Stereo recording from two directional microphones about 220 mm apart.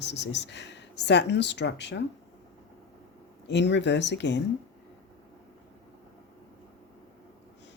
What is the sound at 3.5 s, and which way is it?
Speech, 50° left (ahead or behind).